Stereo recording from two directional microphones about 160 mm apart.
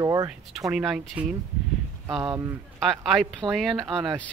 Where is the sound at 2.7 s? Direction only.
Centre (ahead or behind).